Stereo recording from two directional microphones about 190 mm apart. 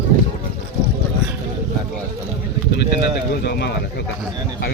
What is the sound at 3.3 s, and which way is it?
Speech, 60° left (ahead or behind).